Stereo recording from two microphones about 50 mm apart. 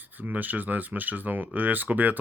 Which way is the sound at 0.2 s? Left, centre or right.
Right.